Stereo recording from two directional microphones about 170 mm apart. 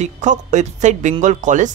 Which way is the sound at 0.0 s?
45° right (ahead or behind).